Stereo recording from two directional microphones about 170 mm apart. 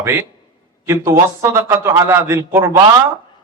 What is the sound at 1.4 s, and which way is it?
A man's voice, 15° right (ahead or behind).